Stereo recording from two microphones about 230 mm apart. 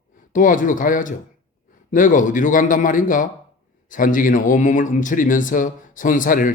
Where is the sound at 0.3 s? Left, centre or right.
Left.